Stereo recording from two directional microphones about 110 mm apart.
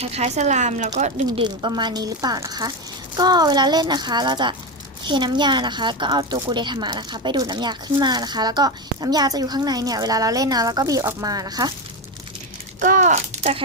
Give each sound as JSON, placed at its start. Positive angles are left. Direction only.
{"t": 0.0, "sound": "speech", "side_deg": -70}
{"t": 1.4, "sound": "a woman's voice", "side_deg": -40}
{"t": 13.0, "sound": "speech", "side_deg": -90}